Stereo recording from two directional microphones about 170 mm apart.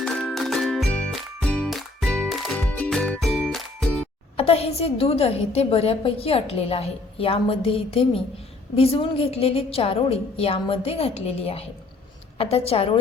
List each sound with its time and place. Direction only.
0.0 s music: 5° left (ahead or behind)
4.4 s a woman's voice: 35° left (ahead or behind)